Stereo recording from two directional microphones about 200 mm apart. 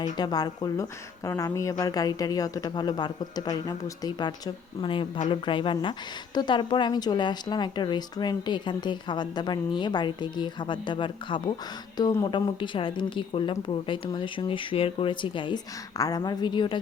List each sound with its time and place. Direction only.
0.0 s a woman's voice: 20° left (ahead or behind)